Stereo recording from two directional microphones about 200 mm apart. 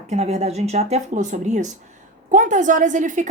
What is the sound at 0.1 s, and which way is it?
A woman's voice, 30° right (ahead or behind).